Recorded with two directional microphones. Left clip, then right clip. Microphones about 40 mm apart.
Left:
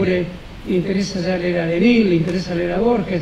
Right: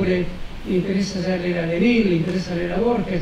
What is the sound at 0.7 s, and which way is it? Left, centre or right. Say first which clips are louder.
Speech: left 2 dB; left.